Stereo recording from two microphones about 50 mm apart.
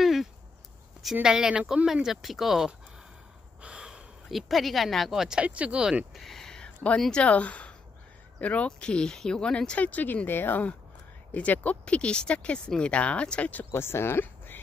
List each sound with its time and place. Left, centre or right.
0.0 s a sound: centre
1.2 s speech: centre
2.0 s speech: centre
3.6 s snort: centre
4.3 s speech: centre
5.4 s speech: right
6.1 s a sound: centre
7.1 s speech: left
13.7 s speech: left